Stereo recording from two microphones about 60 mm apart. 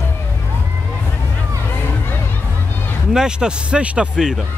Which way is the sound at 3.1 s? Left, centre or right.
Centre.